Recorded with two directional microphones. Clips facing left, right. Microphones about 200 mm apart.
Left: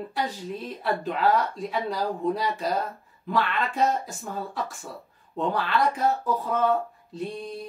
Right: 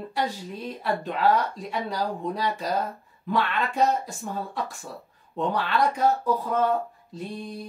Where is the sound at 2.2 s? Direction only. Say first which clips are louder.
Left 2 dB; centre (ahead or behind).